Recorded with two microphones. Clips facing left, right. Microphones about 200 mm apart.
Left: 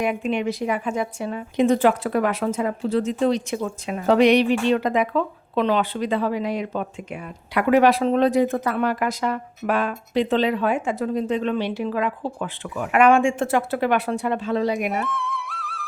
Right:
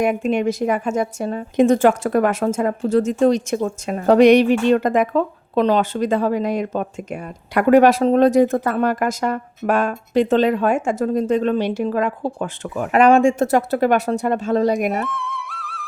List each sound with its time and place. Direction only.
0.0 s a woman's voice: 45° right (ahead or behind)
14.8 s music: centre (ahead or behind)